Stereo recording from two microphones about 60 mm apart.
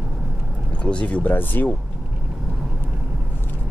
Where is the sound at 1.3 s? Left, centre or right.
Left.